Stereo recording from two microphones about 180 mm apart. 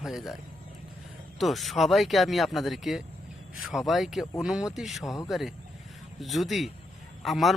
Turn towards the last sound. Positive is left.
turn(degrees=0)  # may be behind; listen again after turning